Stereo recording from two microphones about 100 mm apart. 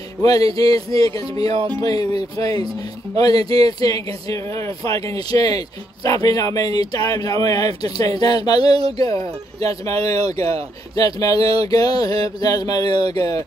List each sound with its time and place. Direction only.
0.2 s speech: 40° left (ahead or behind)
9.0 s speech: 35° left (ahead or behind)